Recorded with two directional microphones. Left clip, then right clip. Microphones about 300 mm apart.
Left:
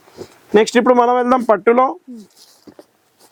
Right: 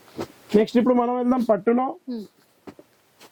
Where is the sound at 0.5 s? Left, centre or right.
Centre.